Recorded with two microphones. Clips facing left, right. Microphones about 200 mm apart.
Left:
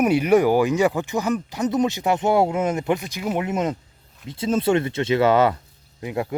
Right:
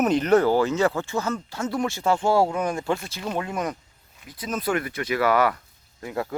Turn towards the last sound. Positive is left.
turn(degrees=20)  # may be behind; listen again after turning